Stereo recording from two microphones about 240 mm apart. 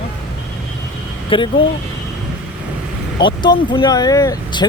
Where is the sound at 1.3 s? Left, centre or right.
Left.